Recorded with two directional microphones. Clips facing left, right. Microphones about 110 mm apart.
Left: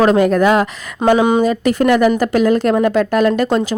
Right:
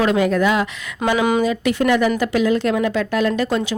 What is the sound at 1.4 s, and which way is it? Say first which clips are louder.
Speech: left 4 dB; 40° left (ahead or behind).